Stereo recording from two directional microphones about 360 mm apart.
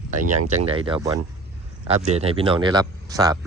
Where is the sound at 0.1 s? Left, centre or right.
Right.